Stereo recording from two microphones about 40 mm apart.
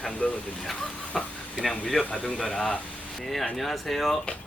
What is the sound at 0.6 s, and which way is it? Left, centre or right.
Speech, centre.